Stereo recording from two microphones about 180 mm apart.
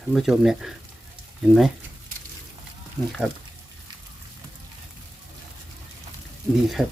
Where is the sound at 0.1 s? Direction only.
Centre (ahead or behind).